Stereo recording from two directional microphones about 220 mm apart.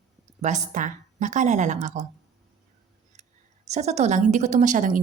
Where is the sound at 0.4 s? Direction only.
35° right (ahead or behind).